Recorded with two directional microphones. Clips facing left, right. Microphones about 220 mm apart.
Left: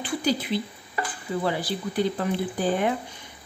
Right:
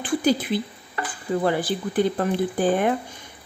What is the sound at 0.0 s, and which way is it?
A woman's voice, 50° right (ahead or behind).